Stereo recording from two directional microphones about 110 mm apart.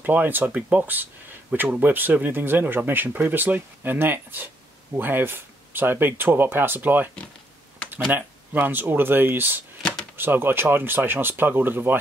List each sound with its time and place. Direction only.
0.0 s speech: 15° right (ahead or behind)
8.1 s speech: 20° right (ahead or behind)
9.8 s a sound: 5° left (ahead or behind)
10.1 s speech: 20° right (ahead or behind)